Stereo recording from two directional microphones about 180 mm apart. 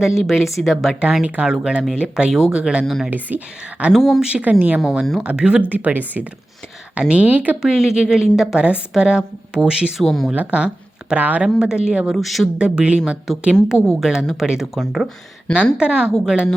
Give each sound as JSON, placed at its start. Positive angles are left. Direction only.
{"t": 0.2, "sound": "a woman's voice", "side_deg": 0}